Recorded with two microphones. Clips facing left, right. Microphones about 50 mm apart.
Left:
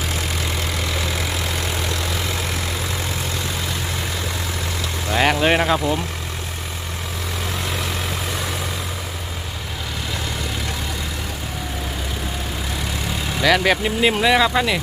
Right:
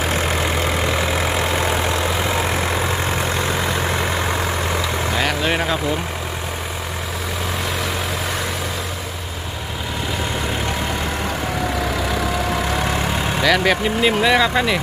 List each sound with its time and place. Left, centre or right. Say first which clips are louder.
0.1 s vehicle: right 5 dB; right
5.1 s vehicle: left 5 dB; centre
5.5 s speech: left 2 dB; centre
13.4 s speech: even; centre